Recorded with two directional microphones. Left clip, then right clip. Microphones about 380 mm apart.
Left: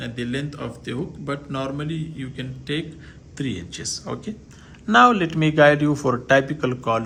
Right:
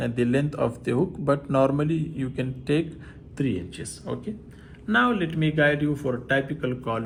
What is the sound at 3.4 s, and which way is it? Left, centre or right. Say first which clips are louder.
Speech: right 1 dB; centre.